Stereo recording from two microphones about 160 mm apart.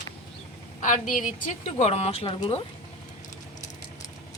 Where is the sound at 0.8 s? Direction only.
55° left (ahead or behind); by 2.6 s 35° left (ahead or behind).